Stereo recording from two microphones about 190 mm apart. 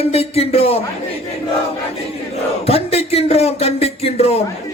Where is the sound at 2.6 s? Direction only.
30° left (ahead or behind).